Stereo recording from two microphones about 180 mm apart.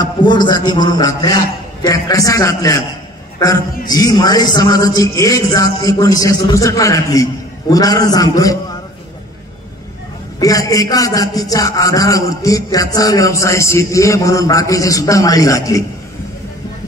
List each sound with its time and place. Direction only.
0.0 s a man's voice: 25° left (ahead or behind)
3.9 s a man's voice: 20° left (ahead or behind)
10.4 s a man's voice: 20° left (ahead or behind)